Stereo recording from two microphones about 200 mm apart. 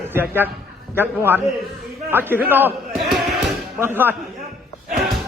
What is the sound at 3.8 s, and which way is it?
Speech, 10° right (ahead or behind).